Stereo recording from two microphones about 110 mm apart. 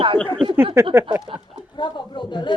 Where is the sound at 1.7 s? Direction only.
45° left (ahead or behind).